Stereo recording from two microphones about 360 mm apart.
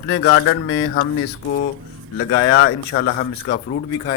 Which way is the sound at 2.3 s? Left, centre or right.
Left.